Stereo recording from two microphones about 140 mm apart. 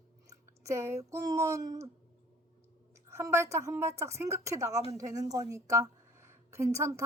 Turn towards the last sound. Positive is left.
turn(degrees=-20)  # may be behind; listen again after turning